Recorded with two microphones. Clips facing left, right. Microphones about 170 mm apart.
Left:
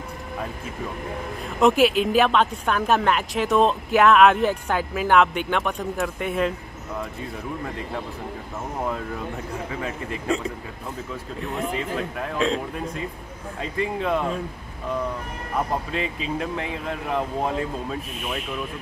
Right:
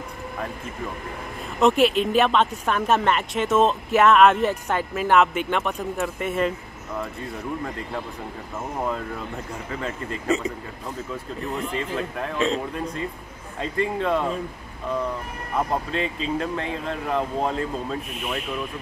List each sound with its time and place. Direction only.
1.6 s speech: centre (ahead or behind)
9.7 s speech: 5° left (ahead or behind)
10.2 s speech: 5° right (ahead or behind)
15.9 s speech: 5° left (ahead or behind)